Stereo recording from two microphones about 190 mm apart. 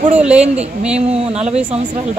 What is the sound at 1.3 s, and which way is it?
Speech, 35° right (ahead or behind).